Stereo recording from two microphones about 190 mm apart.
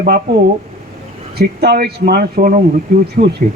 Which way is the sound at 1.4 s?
55° right (ahead or behind).